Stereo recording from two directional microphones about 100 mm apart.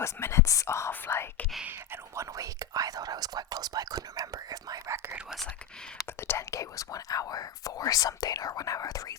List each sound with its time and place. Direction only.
0.0 s speech: 25° left (ahead or behind)
1.6 s speech: 20° right (ahead or behind)
2.3 s speech: 35° right (ahead or behind)
5.1 s whispering: 5° right (ahead or behind)
6.1 s speech: 25° left (ahead or behind)